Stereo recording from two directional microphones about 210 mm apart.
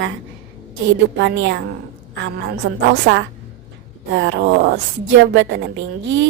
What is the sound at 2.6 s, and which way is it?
A woman's voice, 60° right (ahead or behind).